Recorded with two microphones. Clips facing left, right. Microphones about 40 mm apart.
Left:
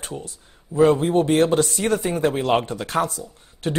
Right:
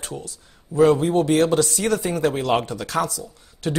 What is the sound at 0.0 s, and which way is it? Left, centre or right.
Speech, left.